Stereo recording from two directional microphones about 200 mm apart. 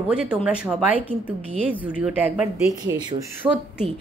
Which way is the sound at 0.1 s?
5° right (ahead or behind).